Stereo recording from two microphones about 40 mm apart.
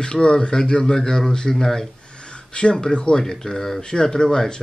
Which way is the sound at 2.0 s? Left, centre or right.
Left.